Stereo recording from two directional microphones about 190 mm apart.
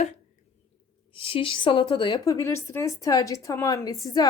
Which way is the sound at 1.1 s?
30° left (ahead or behind).